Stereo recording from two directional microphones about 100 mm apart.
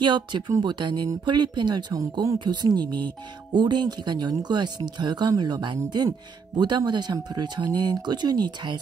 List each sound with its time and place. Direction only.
0.0 s speech: 50° right (ahead or behind)